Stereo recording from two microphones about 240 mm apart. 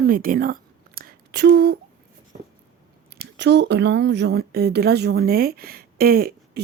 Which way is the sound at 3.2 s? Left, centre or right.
Right.